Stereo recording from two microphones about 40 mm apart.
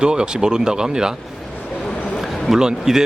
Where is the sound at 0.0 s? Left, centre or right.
Right.